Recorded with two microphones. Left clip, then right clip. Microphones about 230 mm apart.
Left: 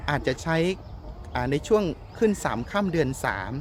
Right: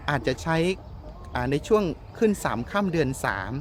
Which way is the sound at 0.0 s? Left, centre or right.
Centre.